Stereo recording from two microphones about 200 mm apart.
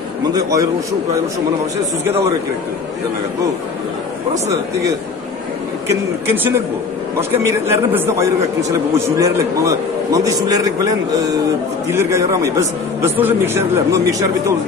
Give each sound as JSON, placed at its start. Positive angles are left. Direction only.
{"t": 0.3, "sound": "speech", "side_deg": -20}
{"t": 4.3, "sound": "speech", "side_deg": -15}